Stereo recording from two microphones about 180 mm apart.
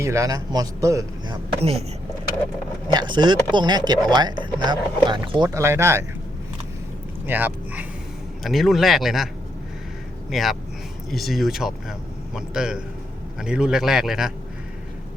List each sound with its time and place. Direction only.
0.0 s speech: 15° right (ahead or behind)
1.5 s speech: 35° right (ahead or behind)
2.9 s speech: 25° right (ahead or behind)
7.3 s a man's voice: 10° right (ahead or behind)